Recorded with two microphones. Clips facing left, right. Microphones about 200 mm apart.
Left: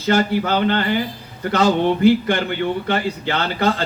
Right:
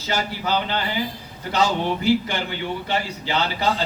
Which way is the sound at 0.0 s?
55° left (ahead or behind).